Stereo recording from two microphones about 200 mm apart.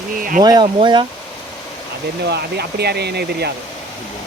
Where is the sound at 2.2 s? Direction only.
55° right (ahead or behind).